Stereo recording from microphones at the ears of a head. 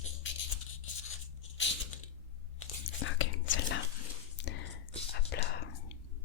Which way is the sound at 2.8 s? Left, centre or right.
Left.